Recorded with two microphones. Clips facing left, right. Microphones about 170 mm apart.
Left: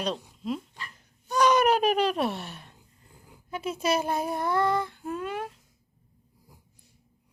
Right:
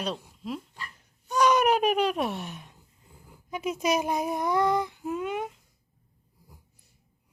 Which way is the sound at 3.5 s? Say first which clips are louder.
Right 1 dB; 15° right (ahead or behind).